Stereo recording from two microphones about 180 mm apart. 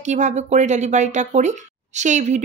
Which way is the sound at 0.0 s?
40° right (ahead or behind).